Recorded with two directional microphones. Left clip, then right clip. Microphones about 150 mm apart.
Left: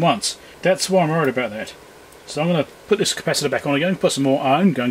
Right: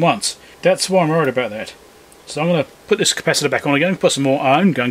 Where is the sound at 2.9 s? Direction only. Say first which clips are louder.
Right 4 dB; 20° right (ahead or behind).